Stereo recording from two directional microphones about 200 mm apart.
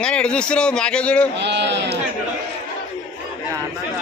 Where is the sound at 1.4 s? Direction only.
60° right (ahead or behind).